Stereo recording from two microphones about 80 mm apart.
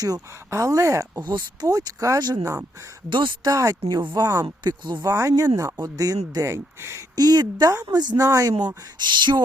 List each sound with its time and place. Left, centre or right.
0.5 s speech: right
1.2 s speech: right
3.1 s speech: right
3.5 s speech: right
4.4 s speech: right
5.1 s speech: right
7.2 s speech: right
7.9 s speech: right
8.5 s speech: right